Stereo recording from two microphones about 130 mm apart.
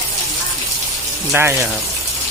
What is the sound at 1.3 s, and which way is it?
Speech, 15° right (ahead or behind).